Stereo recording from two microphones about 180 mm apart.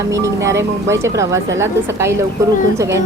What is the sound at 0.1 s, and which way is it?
A woman's voice, 15° right (ahead or behind).